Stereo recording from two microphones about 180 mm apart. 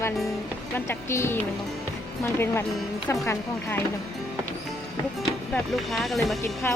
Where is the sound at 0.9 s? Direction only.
15° left (ahead or behind).